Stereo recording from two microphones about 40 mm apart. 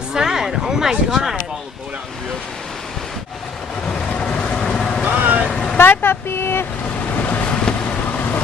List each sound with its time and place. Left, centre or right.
0.1 s a sound: centre
3.8 s vehicle: left
5.0 s vehicle: right
5.5 s vehicle: centre
5.8 s speech: left
7.4 s vehicle: left